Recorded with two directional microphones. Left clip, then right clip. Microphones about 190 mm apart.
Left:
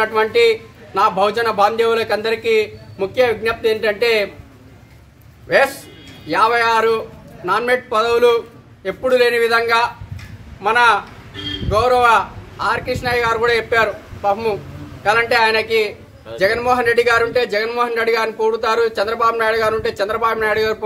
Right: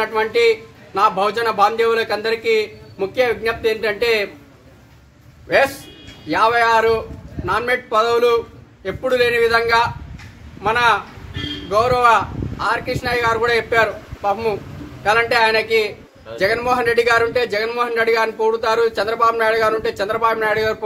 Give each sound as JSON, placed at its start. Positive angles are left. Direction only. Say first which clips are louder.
{"t": 0.0, "sound": "a man's voice", "louder": "left 2 dB", "side_deg": 0}
{"t": 6.2, "sound": "a man's voice", "louder": "even", "side_deg": 5}